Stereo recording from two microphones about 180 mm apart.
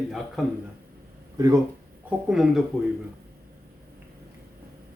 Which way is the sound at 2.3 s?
Centre (ahead or behind).